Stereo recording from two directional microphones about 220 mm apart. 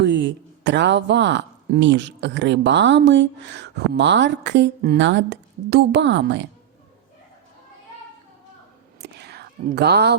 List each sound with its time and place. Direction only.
0.0 s speech: 55° right (ahead or behind)
9.0 s whispering: 45° right (ahead or behind)